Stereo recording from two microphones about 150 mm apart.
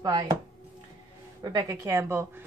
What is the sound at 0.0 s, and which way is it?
Speech, 25° right (ahead or behind).